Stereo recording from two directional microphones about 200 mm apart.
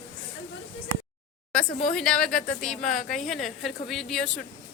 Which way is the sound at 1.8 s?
5° left (ahead or behind).